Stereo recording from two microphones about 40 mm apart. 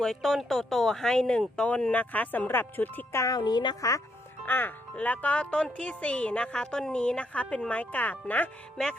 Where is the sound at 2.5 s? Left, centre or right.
Left.